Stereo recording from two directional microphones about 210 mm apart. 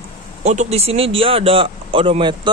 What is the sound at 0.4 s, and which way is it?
Speech, 30° right (ahead or behind).